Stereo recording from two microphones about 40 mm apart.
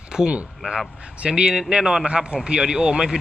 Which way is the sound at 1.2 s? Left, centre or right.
Right.